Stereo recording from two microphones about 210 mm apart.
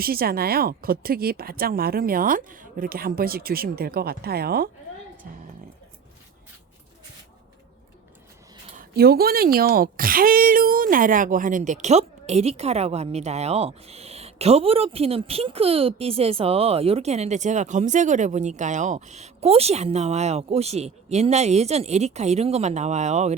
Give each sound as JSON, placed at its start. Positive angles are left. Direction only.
{"t": 0.0, "sound": "a woman's voice", "side_deg": -45}
{"t": 8.8, "sound": "a woman's voice", "side_deg": -50}